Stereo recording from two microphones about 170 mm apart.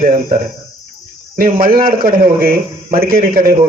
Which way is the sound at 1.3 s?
55° right (ahead or behind).